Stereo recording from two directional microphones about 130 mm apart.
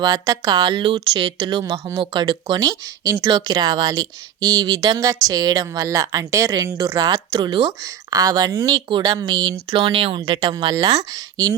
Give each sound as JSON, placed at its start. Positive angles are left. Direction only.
{"t": 0.0, "sound": "speech", "side_deg": -30}